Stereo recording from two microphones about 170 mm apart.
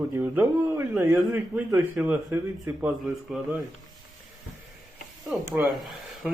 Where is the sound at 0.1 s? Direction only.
15° right (ahead or behind).